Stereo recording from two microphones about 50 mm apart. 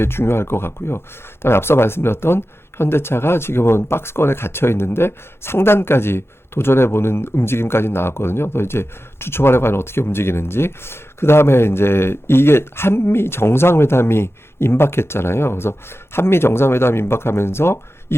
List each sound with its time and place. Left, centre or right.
0.0 s speech: left